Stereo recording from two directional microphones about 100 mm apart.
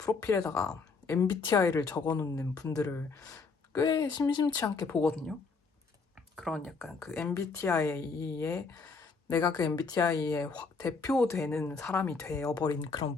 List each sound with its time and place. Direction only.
0.0 s a woman's voice: 35° left (ahead or behind)
4.4 s speech: 30° left (ahead or behind)
4.9 s speech: 15° left (ahead or behind)
6.3 s speech: 5° left (ahead or behind)
7.3 s speech: 30° left (ahead or behind)
9.3 s speech: 40° left (ahead or behind)
12.5 s speech: 50° left (ahead or behind)